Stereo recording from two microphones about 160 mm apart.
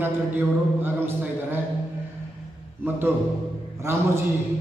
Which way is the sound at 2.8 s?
10° right (ahead or behind).